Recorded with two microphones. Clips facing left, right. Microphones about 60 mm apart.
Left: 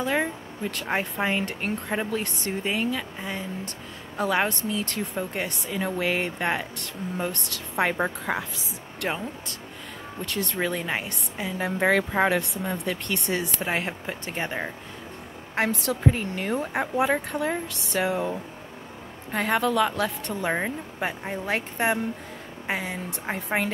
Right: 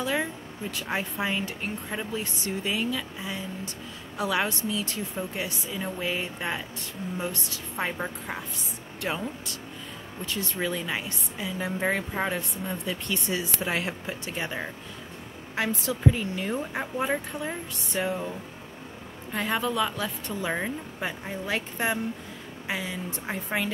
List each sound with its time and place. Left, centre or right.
0.0 s speech: left
2.3 s speech: left
8.3 s speech: left
9.0 s speech: left
10.2 s speech: left
12.2 s speech: left
13.6 s speech: left
15.5 s speech: left
17.0 s speech: left
19.3 s speech: left